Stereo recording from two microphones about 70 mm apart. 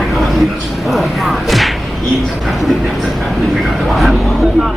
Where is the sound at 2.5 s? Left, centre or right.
Centre.